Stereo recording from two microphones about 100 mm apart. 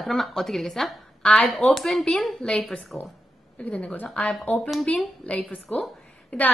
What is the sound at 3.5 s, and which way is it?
Speech, 15° left (ahead or behind).